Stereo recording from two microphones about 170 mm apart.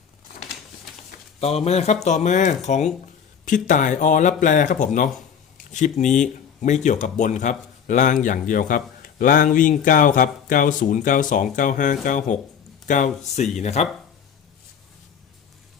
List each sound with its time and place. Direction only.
1.4 s speech: 35° left (ahead or behind)